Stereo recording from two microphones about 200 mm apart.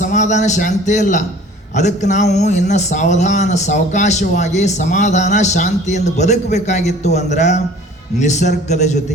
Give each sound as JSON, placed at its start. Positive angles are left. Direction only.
{"t": 0.0, "sound": "a man's voice", "side_deg": 40}